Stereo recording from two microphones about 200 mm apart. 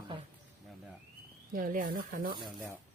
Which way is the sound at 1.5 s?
45° right (ahead or behind).